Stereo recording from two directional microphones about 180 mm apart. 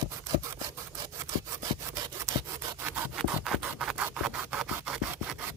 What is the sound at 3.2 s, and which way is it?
Rub, centre (ahead or behind).